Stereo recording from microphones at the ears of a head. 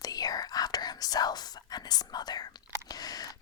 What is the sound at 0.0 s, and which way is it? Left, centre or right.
Speech, left.